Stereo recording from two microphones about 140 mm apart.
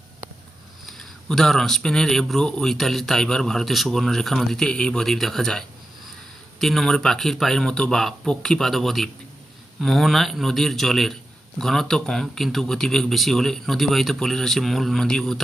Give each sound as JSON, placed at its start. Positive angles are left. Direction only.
{"t": 0.9, "sound": "speech", "side_deg": 0}